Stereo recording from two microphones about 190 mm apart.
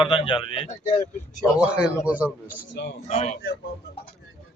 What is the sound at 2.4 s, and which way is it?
Speech, 45° left (ahead or behind).